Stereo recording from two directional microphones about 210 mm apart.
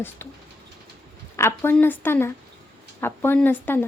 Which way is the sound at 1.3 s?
10° left (ahead or behind).